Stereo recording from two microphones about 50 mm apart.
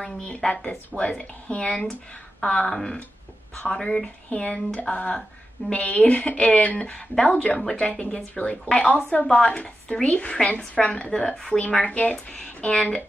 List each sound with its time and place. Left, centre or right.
0.0 s a woman's voice: centre
4.3 s a woman's voice: left
7.3 s a woman's voice: left
11.1 s a woman's voice: centre
11.6 s a woman's voice: left